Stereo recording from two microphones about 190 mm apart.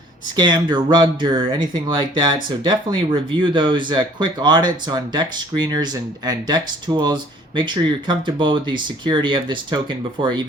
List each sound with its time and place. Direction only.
0.3 s speech: 20° right (ahead or behind)